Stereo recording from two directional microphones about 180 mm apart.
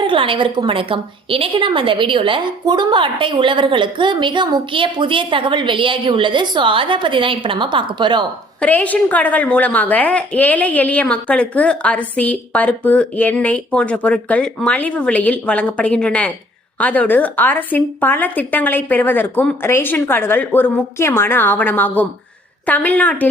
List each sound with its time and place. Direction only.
0.1 s a woman's voice: 30° right (ahead or behind)
8.6 s a woman's voice: 10° left (ahead or behind)